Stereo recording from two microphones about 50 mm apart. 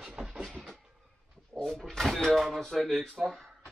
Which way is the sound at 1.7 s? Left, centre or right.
Centre.